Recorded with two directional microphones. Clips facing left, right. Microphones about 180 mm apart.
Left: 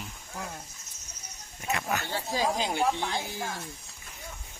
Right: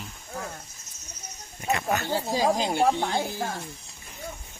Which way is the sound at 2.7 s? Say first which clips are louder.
Right 5 dB; 45° right (ahead or behind).